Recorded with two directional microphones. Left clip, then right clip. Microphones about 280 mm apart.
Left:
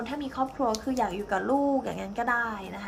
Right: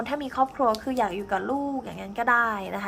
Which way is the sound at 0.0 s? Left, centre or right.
Centre.